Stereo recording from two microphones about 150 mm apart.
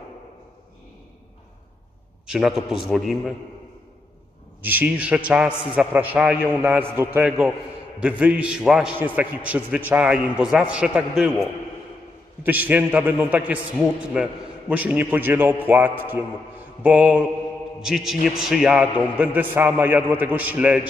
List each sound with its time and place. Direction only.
2.2 s a man's voice: 5° right (ahead or behind)
4.6 s a man's voice: 10° right (ahead or behind)
12.4 s a man's voice: 10° right (ahead or behind)